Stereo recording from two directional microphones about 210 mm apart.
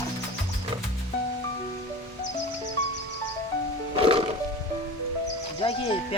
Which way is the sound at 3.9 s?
25° right (ahead or behind).